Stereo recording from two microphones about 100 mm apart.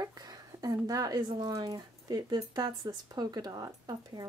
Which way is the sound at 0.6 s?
40° right (ahead or behind).